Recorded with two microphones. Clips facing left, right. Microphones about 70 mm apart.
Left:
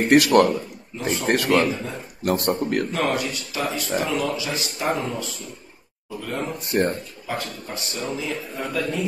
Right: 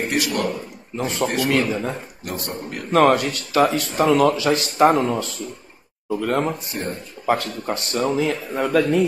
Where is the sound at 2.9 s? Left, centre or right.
Right.